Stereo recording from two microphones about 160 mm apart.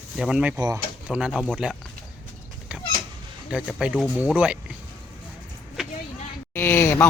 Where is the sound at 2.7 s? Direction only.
5° right (ahead or behind).